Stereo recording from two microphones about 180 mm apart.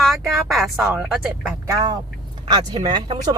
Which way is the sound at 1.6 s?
20° right (ahead or behind).